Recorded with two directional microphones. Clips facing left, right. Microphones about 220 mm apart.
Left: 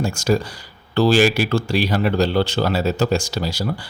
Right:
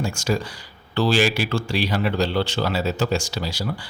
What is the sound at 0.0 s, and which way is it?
Speech, 40° left (ahead or behind).